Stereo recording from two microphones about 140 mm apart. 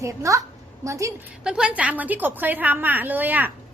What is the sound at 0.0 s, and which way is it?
A woman's voice, 20° right (ahead or behind).